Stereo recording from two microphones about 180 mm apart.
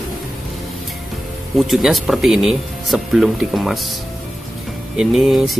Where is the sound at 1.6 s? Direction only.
Centre (ahead or behind).